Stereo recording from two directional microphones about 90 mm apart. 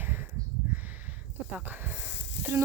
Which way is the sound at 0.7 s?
20° right (ahead or behind).